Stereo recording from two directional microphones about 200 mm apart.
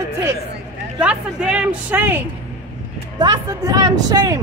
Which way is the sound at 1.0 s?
5° right (ahead or behind).